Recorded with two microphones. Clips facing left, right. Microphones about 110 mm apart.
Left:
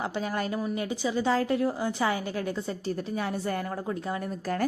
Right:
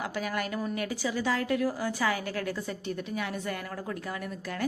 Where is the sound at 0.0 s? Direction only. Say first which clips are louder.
Left 2 dB; 30° left (ahead or behind).